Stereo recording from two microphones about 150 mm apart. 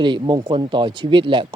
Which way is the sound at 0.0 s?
30° right (ahead or behind).